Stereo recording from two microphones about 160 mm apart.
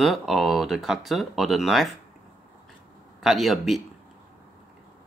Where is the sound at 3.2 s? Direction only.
Centre (ahead or behind).